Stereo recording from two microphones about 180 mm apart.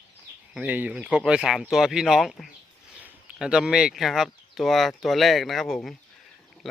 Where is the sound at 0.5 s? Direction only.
10° right (ahead or behind).